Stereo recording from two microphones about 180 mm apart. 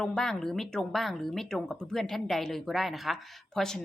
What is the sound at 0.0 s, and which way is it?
Speech, 5° left (ahead or behind).